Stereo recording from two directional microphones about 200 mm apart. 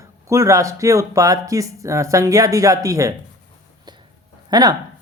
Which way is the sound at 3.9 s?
20° right (ahead or behind).